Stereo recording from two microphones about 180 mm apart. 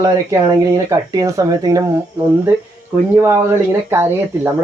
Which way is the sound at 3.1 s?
15° right (ahead or behind).